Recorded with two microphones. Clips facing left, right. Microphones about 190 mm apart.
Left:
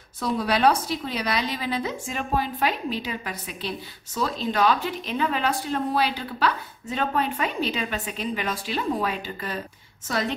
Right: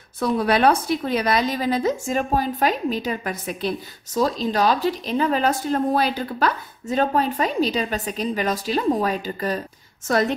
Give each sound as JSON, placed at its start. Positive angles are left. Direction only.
{"t": 0.2, "sound": "a woman's voice", "side_deg": -55}